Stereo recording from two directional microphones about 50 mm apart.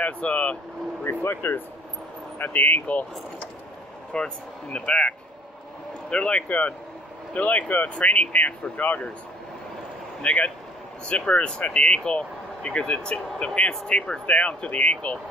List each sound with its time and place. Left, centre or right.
0.0 s speech: left
1.0 s speech: left
4.1 s speech: centre; by 9.1 s left
10.2 s speech: left